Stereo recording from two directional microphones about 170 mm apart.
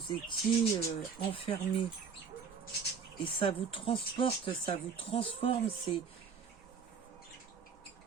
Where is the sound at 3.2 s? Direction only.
30° left (ahead or behind).